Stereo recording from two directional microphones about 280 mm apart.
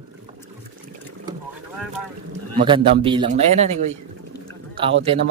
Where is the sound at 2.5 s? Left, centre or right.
Centre.